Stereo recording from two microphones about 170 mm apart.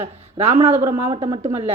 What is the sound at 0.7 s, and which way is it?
Speech, 15° right (ahead or behind).